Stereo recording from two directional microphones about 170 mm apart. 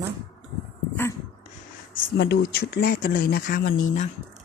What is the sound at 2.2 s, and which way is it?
Speech, 70° left (ahead or behind).